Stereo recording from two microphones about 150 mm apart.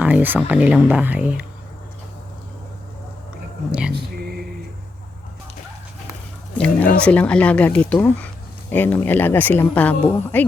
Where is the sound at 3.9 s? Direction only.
90° right.